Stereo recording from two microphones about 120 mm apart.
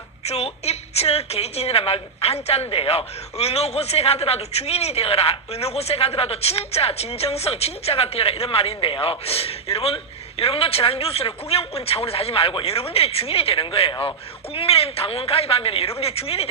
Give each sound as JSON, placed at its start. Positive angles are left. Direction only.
{"t": 0.3, "sound": "a woman's voice", "side_deg": 60}